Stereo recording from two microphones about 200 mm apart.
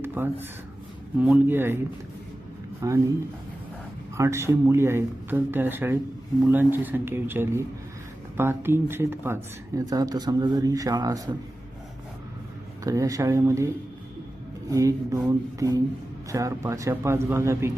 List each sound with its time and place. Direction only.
0.0 s speech: 10° right (ahead or behind)
2.8 s speech: 15° right (ahead or behind)
4.2 s speech: 15° right (ahead or behind)
12.8 s speech: 15° right (ahead or behind)
14.7 s speech: 15° right (ahead or behind)